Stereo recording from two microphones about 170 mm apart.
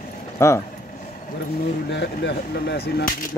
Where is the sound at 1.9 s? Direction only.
80° left.